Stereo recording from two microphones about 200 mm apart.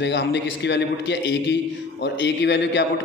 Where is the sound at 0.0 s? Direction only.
60° left (ahead or behind).